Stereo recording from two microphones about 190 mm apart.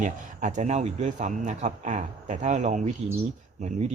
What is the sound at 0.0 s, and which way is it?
Speech, 40° right (ahead or behind).